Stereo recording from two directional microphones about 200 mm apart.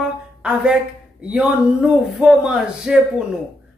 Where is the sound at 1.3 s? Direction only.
5° right (ahead or behind).